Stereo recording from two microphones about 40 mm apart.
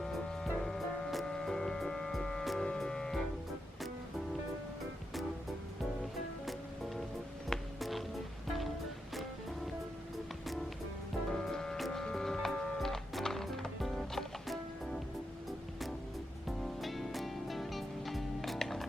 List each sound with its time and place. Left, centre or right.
0.4 s music: centre
6.4 s music: centre
11.3 s music: centre
11.8 s a sound: centre
12.8 s music: centre